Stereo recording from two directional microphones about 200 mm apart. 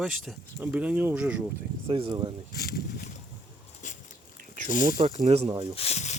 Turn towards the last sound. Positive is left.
turn(degrees=35)  # may be behind; listen again after turning